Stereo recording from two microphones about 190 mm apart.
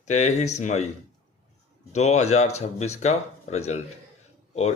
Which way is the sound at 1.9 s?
35° left (ahead or behind).